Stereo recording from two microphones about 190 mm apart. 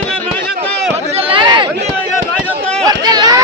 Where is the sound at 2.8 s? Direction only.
20° right (ahead or behind).